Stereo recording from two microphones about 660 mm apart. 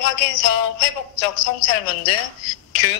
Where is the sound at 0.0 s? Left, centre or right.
Left.